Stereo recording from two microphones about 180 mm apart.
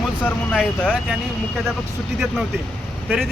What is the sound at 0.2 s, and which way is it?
Speech, 5° left (ahead or behind).